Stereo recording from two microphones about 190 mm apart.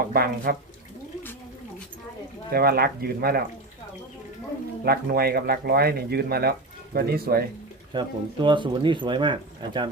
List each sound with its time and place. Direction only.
0.1 s speech: 50° right (ahead or behind)
2.5 s speech: 55° right (ahead or behind)
4.9 s speech: 55° right (ahead or behind)
7.9 s speech: 25° right (ahead or behind)